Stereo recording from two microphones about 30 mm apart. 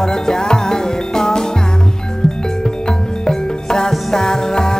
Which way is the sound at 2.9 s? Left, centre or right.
Left.